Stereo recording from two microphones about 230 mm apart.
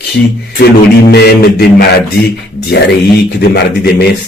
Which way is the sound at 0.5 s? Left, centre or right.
Left.